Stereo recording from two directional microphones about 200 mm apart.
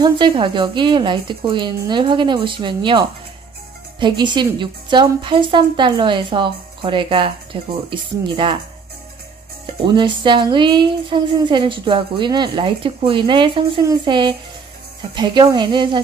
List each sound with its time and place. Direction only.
0.0 s speech: 25° right (ahead or behind)
9.8 s speech: 25° right (ahead or behind)